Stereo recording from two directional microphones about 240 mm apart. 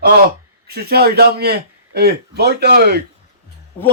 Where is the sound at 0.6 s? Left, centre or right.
Right.